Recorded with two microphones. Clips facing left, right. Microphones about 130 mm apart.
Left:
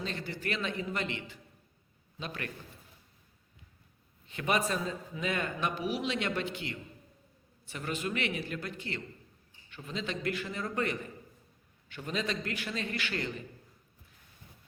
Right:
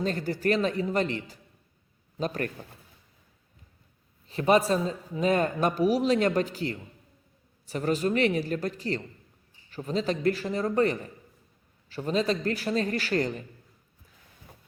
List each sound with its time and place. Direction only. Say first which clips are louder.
0.0 s a man's voice: right 10 dB; 45° right (ahead or behind)
4.3 s a man's voice: right 8 dB; 35° right (ahead or behind)